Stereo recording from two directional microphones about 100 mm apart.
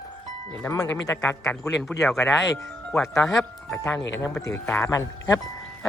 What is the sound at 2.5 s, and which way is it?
Speech, 30° left (ahead or behind).